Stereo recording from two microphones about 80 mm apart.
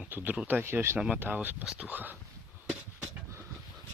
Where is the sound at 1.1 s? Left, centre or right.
Right.